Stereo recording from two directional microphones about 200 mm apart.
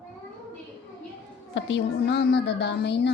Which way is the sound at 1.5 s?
65° left (ahead or behind).